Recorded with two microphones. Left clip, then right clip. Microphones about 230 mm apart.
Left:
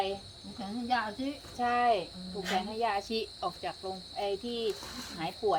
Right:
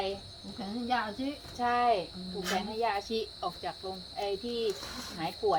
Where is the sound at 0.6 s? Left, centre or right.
Centre.